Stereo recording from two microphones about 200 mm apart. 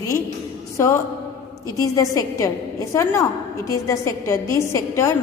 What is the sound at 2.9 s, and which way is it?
A woman's voice, 15° left (ahead or behind).